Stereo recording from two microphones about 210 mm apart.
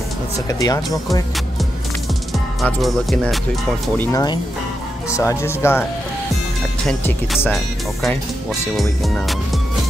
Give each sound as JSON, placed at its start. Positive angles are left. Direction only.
{"t": 0.5, "sound": "speech", "side_deg": 15}
{"t": 2.3, "sound": "speech", "side_deg": 0}
{"t": 4.1, "sound": "speech", "side_deg": 20}
{"t": 6.9, "sound": "speech", "side_deg": 5}